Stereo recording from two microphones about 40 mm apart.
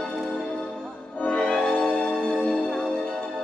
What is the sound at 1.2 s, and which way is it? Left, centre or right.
Music, left.